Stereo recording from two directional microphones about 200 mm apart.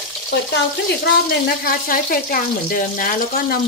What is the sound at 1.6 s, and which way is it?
Speech, 45° left (ahead or behind).